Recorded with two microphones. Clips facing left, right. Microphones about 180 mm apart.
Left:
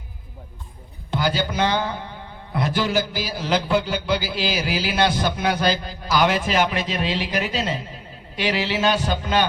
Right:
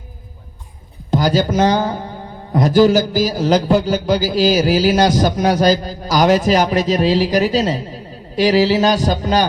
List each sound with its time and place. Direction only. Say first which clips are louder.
1.1 s a man's voice: right 8 dB; 40° right (ahead or behind)